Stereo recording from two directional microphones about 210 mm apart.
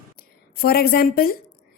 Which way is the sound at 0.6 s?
45° left (ahead or behind).